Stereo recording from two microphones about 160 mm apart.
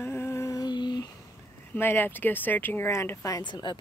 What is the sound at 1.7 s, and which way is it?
Speech, 15° left (ahead or behind).